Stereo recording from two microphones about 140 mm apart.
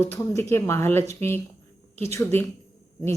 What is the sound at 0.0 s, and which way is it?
Speech, 20° left (ahead or behind).